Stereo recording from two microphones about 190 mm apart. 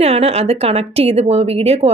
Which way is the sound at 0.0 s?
30° right (ahead or behind).